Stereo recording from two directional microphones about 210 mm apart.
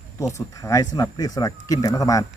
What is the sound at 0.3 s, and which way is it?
Speech, 15° left (ahead or behind).